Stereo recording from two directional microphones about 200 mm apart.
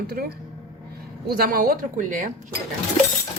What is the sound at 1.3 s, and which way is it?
Speech, 45° right (ahead or behind).